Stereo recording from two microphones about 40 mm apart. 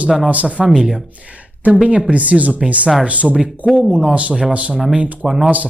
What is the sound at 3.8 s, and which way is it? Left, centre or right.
Speech, centre.